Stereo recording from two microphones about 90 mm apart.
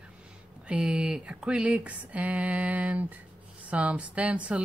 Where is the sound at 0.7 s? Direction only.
10° right (ahead or behind).